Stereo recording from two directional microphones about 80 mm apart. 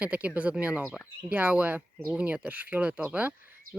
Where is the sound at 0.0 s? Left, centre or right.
Centre.